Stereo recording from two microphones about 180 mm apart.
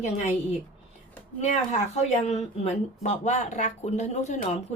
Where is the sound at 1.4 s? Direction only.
40° left (ahead or behind).